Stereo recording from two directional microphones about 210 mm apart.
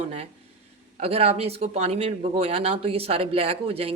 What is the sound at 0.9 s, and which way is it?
A woman's voice, 30° right (ahead or behind).